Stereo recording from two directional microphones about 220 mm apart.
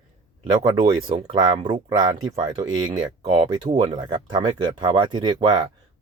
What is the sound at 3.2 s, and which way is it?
Speech, 30° right (ahead or behind).